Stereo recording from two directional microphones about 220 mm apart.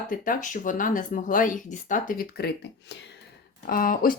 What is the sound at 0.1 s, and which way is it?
Speech, 35° left (ahead or behind).